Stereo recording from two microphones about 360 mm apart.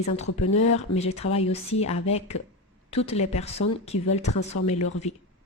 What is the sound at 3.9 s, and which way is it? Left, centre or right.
Speech, left.